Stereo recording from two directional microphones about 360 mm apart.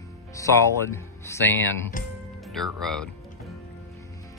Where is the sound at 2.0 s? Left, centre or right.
Left.